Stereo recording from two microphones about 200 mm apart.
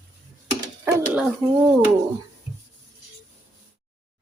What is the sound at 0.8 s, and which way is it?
Dog, 5° right (ahead or behind).